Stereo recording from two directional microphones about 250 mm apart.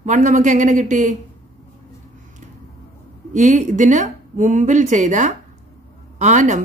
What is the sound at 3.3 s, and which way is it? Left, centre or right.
A woman's voice, right.